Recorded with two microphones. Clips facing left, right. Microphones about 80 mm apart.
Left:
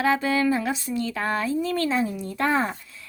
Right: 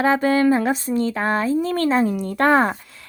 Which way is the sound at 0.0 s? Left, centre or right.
Right.